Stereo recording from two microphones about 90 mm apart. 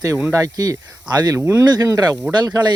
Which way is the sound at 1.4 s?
25° right (ahead or behind).